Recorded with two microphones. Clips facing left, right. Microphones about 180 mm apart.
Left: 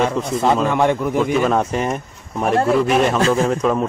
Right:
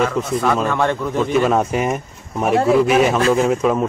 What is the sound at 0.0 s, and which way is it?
Speech, 30° left (ahead or behind).